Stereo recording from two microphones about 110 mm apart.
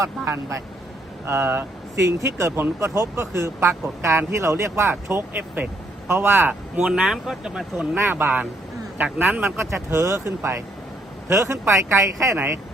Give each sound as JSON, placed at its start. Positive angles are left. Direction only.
{"t": 0.0, "sound": "speech", "side_deg": -30}
{"t": 7.9, "sound": "speech", "side_deg": -20}